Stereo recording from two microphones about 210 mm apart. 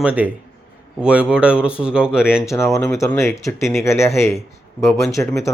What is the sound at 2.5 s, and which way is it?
Speech, 15° left (ahead or behind).